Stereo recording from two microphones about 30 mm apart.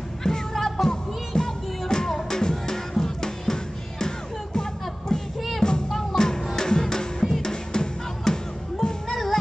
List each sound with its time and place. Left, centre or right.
0.6 s music: centre
0.8 s music: left
8.2 s music: centre